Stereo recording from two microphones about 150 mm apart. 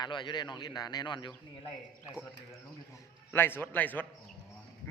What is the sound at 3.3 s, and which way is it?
Speech, 15° left (ahead or behind).